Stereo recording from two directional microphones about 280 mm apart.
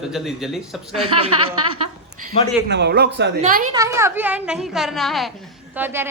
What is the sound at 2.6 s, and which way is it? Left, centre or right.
Speech, right.